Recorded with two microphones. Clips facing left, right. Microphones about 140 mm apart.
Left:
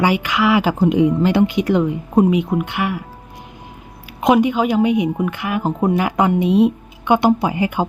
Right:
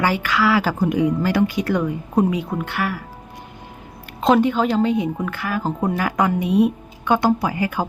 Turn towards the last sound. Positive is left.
turn(degrees=20)  # may be behind; listen again after turning